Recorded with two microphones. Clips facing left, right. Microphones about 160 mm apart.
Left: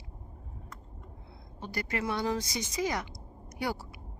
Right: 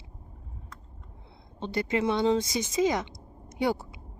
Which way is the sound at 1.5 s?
25° right (ahead or behind).